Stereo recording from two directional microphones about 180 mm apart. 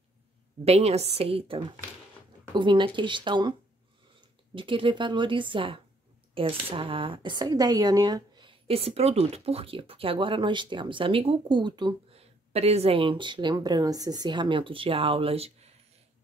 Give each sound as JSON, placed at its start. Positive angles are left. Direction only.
{"t": 0.7, "sound": "a woman's voice", "side_deg": -35}